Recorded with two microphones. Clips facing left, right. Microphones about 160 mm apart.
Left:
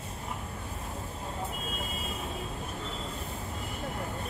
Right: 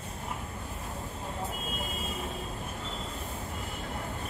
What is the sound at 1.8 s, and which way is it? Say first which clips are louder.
Vehicle: right 1 dB; centre (ahead or behind).